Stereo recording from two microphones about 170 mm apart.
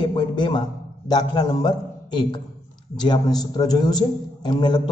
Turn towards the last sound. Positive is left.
turn(degrees=25)  # may be behind; listen again after turning